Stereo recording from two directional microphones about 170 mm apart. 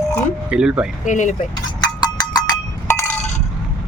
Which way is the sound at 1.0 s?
45° left (ahead or behind).